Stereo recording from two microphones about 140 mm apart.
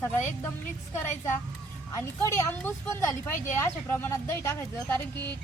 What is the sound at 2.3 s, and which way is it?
Speech, 20° left (ahead or behind).